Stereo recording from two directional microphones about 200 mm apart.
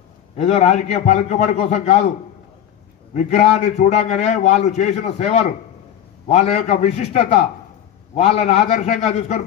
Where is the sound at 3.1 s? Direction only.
35° left (ahead or behind).